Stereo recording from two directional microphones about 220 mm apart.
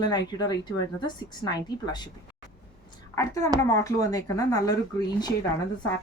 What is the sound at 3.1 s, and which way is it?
Speech, 15° left (ahead or behind).